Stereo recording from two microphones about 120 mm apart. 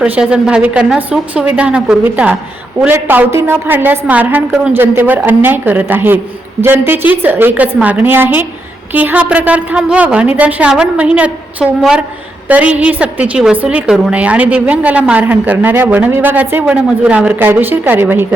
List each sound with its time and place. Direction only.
0.0 s a woman's voice: 10° right (ahead or behind)